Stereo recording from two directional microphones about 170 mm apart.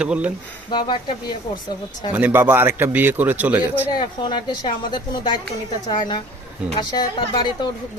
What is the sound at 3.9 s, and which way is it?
Speech, 25° left (ahead or behind).